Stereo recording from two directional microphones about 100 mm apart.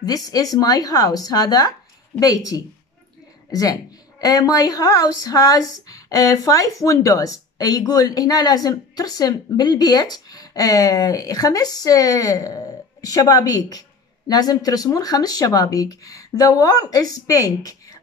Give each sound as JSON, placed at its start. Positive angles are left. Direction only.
{"t": 0.0, "sound": "speech", "side_deg": 40}